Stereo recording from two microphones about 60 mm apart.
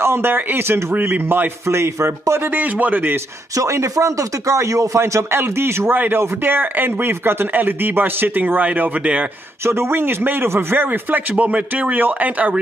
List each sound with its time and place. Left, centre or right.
0.0 s speech: right
0.9 s speech: right
2.5 s speech: right
3.5 s speech: right
5.9 s speech: right
9.7 s speech: right